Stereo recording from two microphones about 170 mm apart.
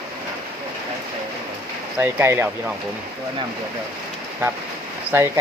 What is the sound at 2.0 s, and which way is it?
Speech, 15° right (ahead or behind).